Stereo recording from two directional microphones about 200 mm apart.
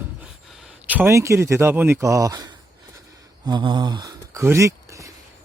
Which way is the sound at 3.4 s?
20° right (ahead or behind).